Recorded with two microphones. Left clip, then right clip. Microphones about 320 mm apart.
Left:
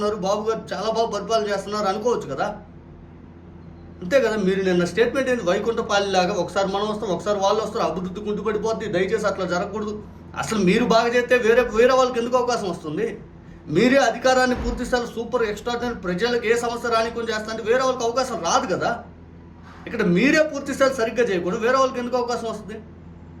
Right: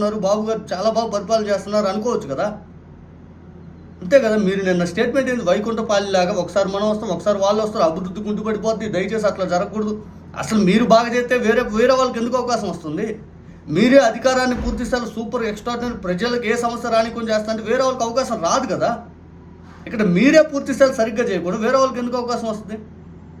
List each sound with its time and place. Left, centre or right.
0.0 s a man's voice: centre
4.1 s a man's voice: centre